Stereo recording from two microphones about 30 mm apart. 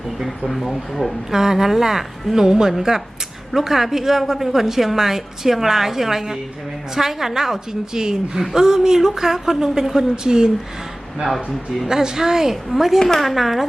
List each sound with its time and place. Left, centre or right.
0.3 s speech: centre
1.3 s a woman's voice: centre
11.9 s a woman's voice: centre